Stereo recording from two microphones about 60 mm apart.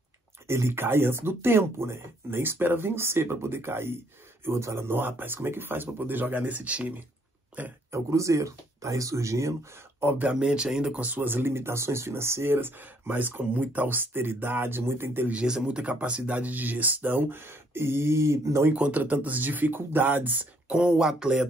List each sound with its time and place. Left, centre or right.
0.5 s speech: right
7.9 s speech: right
9.9 s speech: right
10.3 s speech: centre
11.1 s speech: right
15.3 s speech: centre; by 18.7 s right
18.7 s speech: right
20.7 s speech: centre